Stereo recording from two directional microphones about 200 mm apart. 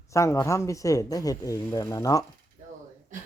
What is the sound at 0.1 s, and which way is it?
Speech, 15° left (ahead or behind).